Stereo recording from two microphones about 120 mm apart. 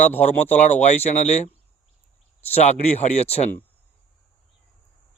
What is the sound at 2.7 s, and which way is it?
Speech, 75° left (ahead or behind).